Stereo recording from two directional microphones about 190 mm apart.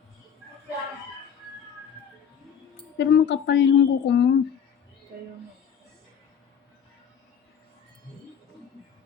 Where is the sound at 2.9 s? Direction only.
65° left (ahead or behind).